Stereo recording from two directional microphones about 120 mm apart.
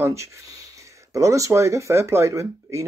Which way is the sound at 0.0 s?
25° right (ahead or behind).